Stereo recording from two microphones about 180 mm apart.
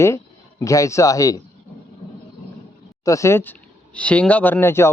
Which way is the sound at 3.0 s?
15° left (ahead or behind).